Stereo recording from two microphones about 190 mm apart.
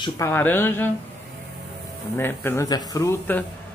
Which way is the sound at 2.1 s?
10° left (ahead or behind).